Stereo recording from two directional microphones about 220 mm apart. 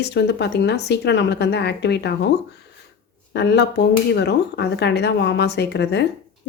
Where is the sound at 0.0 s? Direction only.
50° left (ahead or behind).